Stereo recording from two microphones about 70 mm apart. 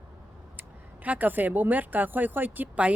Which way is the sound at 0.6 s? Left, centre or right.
Right.